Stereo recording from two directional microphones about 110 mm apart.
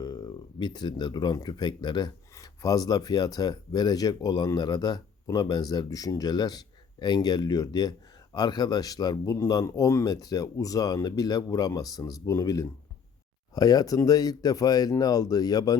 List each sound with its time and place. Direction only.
0.0 s speech: 40° left (ahead or behind)